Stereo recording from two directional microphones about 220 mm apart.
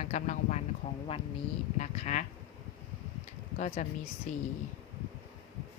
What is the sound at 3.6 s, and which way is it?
Speech, 35° left (ahead or behind).